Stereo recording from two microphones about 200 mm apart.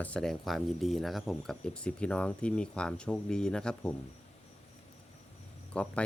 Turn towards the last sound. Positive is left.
turn(degrees=5)  # may be behind; listen again after turning